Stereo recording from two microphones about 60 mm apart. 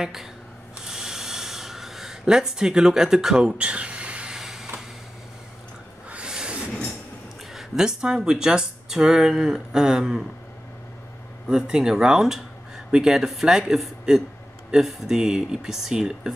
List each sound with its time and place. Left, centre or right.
0.0 s speech: centre
0.8 s snort: centre
4.4 s vehicle: centre
6.0 s a sound: centre
7.5 s speech: centre
11.4 s speech: centre